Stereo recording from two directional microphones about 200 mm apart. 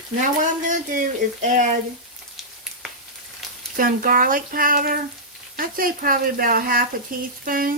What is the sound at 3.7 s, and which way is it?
Speech, 45° right (ahead or behind).